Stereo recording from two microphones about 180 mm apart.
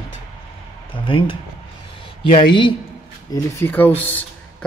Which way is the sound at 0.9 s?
30° left (ahead or behind).